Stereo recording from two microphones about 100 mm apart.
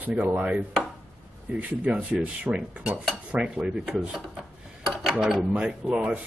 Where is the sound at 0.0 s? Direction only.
15° right (ahead or behind).